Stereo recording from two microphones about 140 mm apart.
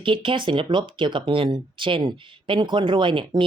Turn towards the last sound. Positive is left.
turn(degrees=-35)  # may be behind; listen again after turning